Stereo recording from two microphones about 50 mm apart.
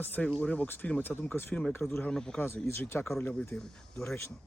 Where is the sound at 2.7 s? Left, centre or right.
Left.